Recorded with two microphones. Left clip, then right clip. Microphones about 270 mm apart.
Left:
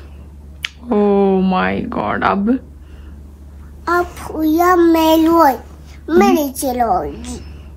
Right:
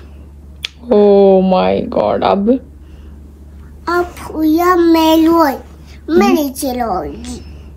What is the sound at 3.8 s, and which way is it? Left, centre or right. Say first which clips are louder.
A child's voice: right 1 dB; centre.